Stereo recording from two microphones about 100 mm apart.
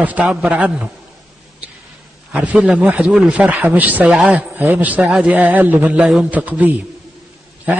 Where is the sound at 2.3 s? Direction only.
10° right (ahead or behind).